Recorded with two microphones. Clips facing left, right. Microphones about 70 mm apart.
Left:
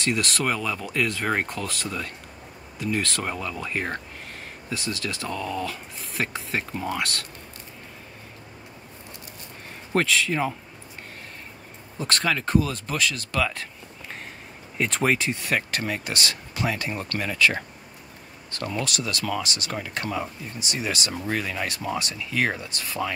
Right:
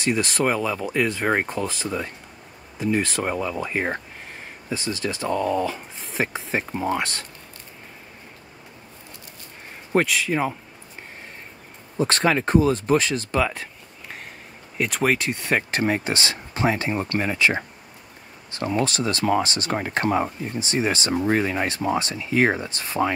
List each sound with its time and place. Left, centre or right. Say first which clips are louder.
0.0 s speech: right 3 dB; centre
9.9 s speech: right 2 dB; centre
12.0 s speech: right 5 dB; right
14.8 s speech: right 1 dB; centre
15.5 s speech: right 7 dB; right